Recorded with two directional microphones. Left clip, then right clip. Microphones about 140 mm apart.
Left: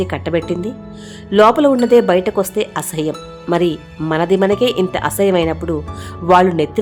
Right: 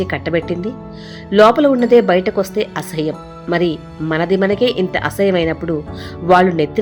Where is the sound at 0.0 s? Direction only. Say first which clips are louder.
Even; 20° left (ahead or behind).